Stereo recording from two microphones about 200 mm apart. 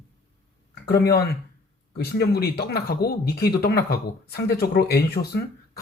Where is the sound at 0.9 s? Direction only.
55° left (ahead or behind).